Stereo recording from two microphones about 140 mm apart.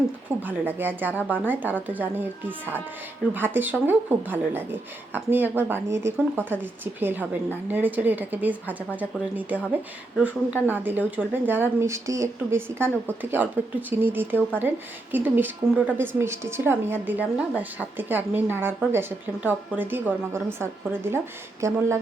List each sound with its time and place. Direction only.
0.4 s a woman's voice: 15° right (ahead or behind)